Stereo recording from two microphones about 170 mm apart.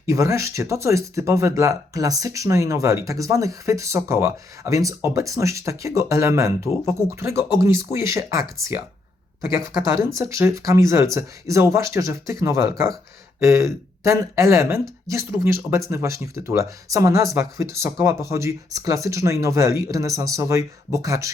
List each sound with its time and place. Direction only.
0.0 s speech: 15° right (ahead or behind)
9.9 s speech: 15° right (ahead or behind)